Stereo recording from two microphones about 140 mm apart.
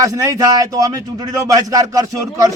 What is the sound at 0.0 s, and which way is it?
A man's voice, 25° right (ahead or behind).